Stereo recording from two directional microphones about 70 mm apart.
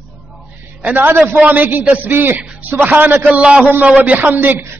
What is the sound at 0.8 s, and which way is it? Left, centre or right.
A man's voice, right.